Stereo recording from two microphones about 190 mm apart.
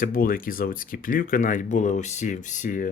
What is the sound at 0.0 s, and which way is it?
Speech, 50° left (ahead or behind).